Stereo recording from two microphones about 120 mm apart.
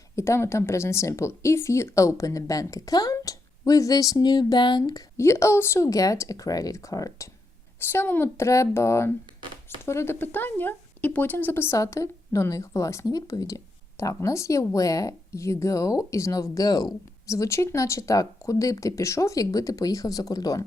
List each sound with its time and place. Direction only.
0.2 s speech: 20° left (ahead or behind); by 4.8 s 40° left (ahead or behind)
4.9 s speech: 30° left (ahead or behind)